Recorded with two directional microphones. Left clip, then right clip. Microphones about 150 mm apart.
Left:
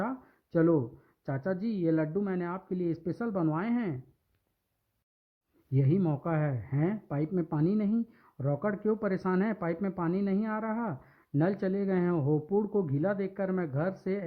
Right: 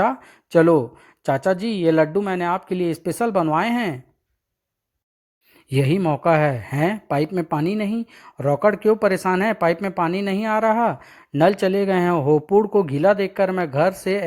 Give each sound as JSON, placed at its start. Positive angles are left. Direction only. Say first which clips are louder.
{"t": 0.0, "sound": "speech", "louder": "right 16 dB", "side_deg": -35}
{"t": 5.7, "sound": "speech", "louder": "right 11 dB", "side_deg": -30}
{"t": 7.7, "sound": "speech", "louder": "right 7 dB", "side_deg": -25}